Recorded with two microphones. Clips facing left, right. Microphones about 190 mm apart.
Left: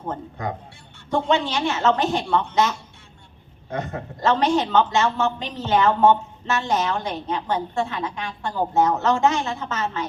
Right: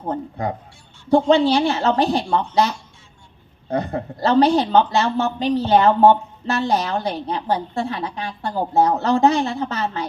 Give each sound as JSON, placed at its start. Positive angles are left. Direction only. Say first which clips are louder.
{"t": 0.1, "sound": "a man's voice", "louder": "right 5 dB", "side_deg": -35}